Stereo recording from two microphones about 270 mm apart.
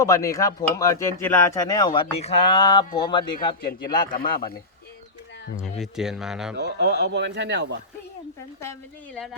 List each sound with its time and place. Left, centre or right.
0.0 s speech: centre
3.7 s speech: left
5.5 s speech: centre
6.6 s speech: right